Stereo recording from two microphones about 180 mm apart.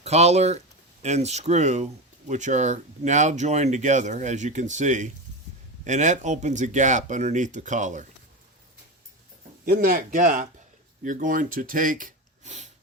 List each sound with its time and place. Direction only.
0.0 s speech: 35° right (ahead or behind)
9.6 s speech: 55° right (ahead or behind)